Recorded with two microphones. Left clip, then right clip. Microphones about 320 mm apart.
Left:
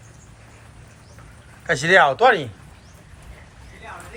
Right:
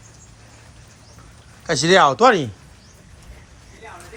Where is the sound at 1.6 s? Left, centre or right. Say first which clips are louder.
Right 1 dB; right.